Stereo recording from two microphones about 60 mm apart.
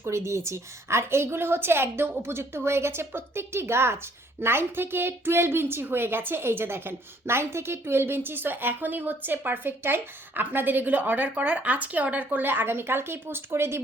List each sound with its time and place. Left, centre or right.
0.0 s a woman's voice: right